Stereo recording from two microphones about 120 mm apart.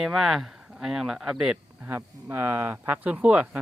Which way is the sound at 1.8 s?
15° right (ahead or behind).